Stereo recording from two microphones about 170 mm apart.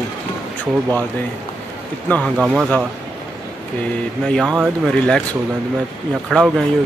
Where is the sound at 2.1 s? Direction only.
5° left (ahead or behind).